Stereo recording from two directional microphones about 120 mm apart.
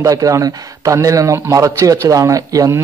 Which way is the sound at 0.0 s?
30° right (ahead or behind).